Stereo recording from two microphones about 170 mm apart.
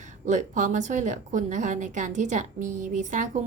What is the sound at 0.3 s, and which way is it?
A woman's voice, 45° right (ahead or behind).